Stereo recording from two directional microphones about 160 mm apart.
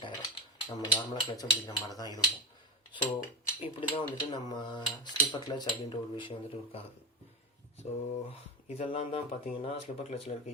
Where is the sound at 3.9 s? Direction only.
30° left (ahead or behind).